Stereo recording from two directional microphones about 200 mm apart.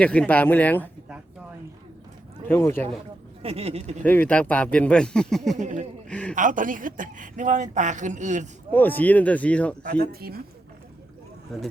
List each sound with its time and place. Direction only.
0.0 s speech: 5° left (ahead or behind)
2.5 s speech: 10° left (ahead or behind)
3.4 s speech: 30° right (ahead or behind)
4.0 s speech: 10° left (ahead or behind)
5.5 s speech: 40° right (ahead or behind)
6.1 s a man's voice: 5° left (ahead or behind)
6.3 s speech: 40° right (ahead or behind)
8.7 s speech: 10° left (ahead or behind)
9.8 s speech: 55° right (ahead or behind)
11.5 s speech: centre (ahead or behind)